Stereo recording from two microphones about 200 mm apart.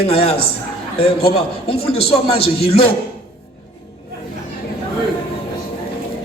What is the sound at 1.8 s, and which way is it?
A man's voice, 30° left (ahead or behind).